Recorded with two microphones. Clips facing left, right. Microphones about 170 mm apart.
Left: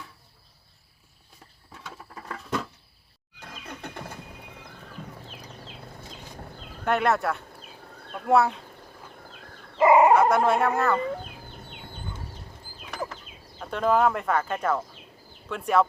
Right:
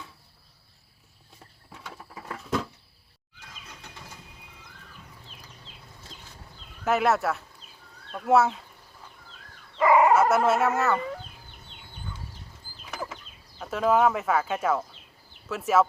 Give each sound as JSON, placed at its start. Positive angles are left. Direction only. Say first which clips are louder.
{"t": 1.8, "sound": "patter", "louder": "even", "side_deg": -5}
{"t": 3.4, "sound": "vehicle", "louder": "left 8 dB", "side_deg": 55}
{"t": 5.2, "sound": "a sound", "louder": "left 7 dB", "side_deg": 55}
{"t": 6.8, "sound": "speech", "louder": "even", "side_deg": 0}
{"t": 7.6, "sound": "a sound", "louder": "left 7 dB", "side_deg": 55}
{"t": 8.1, "sound": "speech", "louder": "even", "side_deg": 0}
{"t": 9.7, "sound": "fowl", "louder": "left 2 dB", "side_deg": 25}
{"t": 10.2, "sound": "speech", "louder": "left 1 dB", "side_deg": -5}
{"t": 11.3, "sound": "chicken", "louder": "left 7 dB", "side_deg": 60}
{"t": 13.6, "sound": "speech", "louder": "even", "side_deg": -5}